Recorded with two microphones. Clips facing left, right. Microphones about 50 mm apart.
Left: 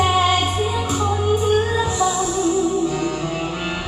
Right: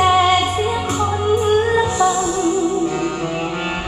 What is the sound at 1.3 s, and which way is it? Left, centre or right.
Music, right.